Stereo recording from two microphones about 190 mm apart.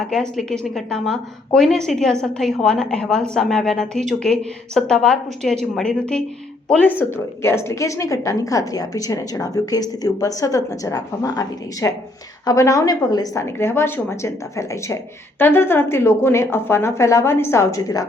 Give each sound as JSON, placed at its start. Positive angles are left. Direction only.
{"t": 0.1, "sound": "a woman's voice", "side_deg": 5}